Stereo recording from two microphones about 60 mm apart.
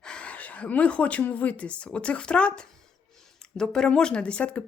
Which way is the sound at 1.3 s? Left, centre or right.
Left.